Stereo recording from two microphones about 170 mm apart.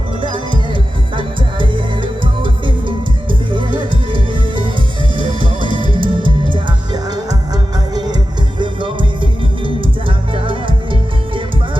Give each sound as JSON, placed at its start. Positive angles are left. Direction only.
{"t": 0.2, "sound": "music", "side_deg": -30}